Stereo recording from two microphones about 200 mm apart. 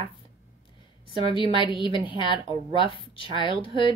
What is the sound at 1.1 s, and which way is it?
A woman's voice, 25° left (ahead or behind).